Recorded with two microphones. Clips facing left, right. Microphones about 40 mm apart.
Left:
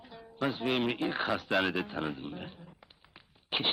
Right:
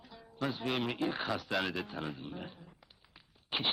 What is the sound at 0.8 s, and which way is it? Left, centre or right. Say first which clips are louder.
Speech: left 3 dB; centre.